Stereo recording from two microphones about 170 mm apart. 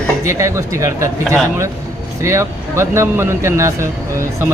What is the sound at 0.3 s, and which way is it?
Speech, 15° right (ahead or behind).